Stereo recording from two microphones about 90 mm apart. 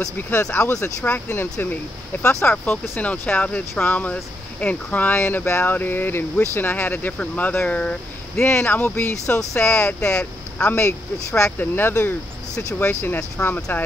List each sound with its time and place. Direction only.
0.0 s speech: 30° left (ahead or behind); by 8.0 s 15° left (ahead or behind)
8.4 s speech: 25° left (ahead or behind)
9.7 s speech: 15° left (ahead or behind)